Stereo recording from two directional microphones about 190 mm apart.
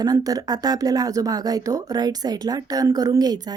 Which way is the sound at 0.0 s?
20° right (ahead or behind).